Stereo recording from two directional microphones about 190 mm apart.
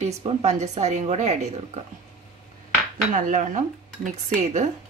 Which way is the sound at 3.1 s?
40° right (ahead or behind).